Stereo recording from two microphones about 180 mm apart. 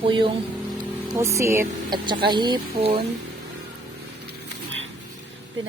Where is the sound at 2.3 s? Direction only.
25° right (ahead or behind).